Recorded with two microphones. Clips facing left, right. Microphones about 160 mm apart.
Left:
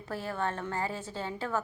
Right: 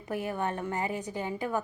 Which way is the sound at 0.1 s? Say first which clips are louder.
Right 2 dB; 15° right (ahead or behind).